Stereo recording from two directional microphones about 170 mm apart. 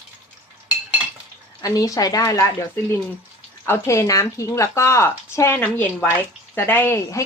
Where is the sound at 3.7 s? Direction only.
15° left (ahead or behind).